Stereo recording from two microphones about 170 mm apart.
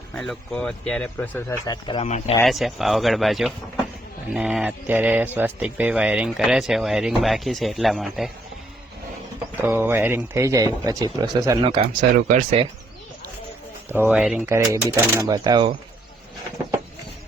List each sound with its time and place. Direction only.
0.1 s speech: 5° left (ahead or behind); by 2.0 s 25° left (ahead or behind)
2.0 s speech: 40° left (ahead or behind)
2.4 s speech: centre (ahead or behind)
9.6 s speech: 15° right (ahead or behind)
11.6 s speech: 30° right (ahead or behind)
11.9 s speech: 45° right (ahead or behind)
13.8 s speech: 15° right (ahead or behind)